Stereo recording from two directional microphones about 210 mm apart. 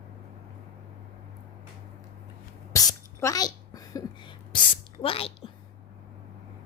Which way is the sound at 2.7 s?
15° left (ahead or behind).